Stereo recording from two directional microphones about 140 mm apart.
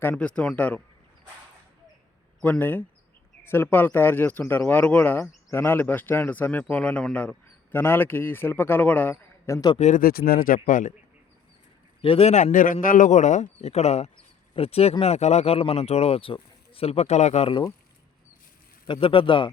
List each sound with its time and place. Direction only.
0.0 s speech: 10° left (ahead or behind)
2.4 s speech: 10° left (ahead or behind)
9.7 s a man's voice: 55° left (ahead or behind)
10.0 s speech: 90° left; by 10.9 s 70° left (ahead or behind)
12.0 s a man's voice: 45° left (ahead or behind)
18.9 s a man's voice: 40° left (ahead or behind)